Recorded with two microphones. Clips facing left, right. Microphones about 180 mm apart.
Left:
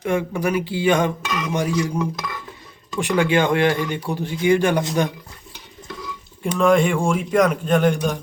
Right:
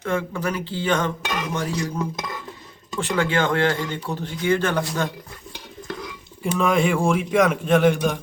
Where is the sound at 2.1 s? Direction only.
25° right (ahead or behind).